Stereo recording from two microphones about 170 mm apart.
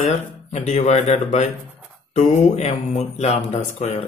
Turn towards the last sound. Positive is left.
turn(degrees=40)  # may be behind; listen again after turning